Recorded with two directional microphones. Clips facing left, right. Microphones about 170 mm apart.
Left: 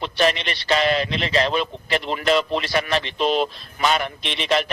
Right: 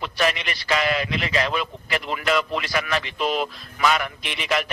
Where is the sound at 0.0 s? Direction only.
30° left (ahead or behind).